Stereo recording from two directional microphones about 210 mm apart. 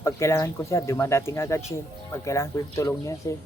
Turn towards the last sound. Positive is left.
turn(degrees=15)  # may be behind; listen again after turning